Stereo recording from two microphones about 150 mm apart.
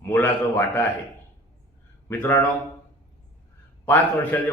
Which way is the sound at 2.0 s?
15° left (ahead or behind).